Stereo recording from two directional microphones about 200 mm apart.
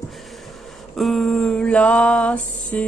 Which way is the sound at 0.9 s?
Centre (ahead or behind).